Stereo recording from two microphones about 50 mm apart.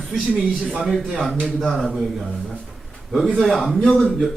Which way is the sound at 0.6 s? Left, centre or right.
Right.